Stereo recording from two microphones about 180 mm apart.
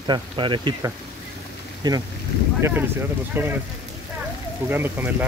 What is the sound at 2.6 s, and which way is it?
Speech, 10° right (ahead or behind).